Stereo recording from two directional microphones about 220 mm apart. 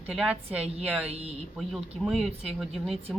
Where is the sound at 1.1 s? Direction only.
30° right (ahead or behind).